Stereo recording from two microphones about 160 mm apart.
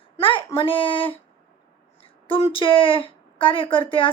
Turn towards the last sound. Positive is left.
turn(degrees=35)  # may be behind; listen again after turning